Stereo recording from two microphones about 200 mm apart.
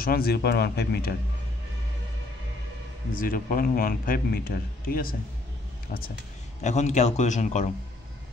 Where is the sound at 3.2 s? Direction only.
45° left (ahead or behind).